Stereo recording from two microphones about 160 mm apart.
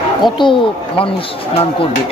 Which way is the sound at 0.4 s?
30° left (ahead or behind).